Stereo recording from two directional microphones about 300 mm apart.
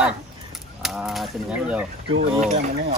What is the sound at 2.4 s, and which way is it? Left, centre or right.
Speech, right.